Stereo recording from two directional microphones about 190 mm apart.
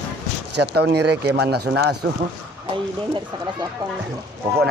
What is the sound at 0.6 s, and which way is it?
Speech, 60° right (ahead or behind).